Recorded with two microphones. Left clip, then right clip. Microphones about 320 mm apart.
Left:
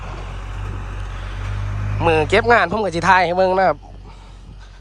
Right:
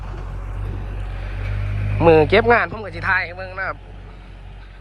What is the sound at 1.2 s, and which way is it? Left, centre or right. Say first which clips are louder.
Vehicle: right 1 dB; centre.